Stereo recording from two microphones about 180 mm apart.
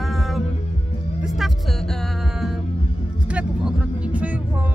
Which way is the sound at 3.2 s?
5° right (ahead or behind).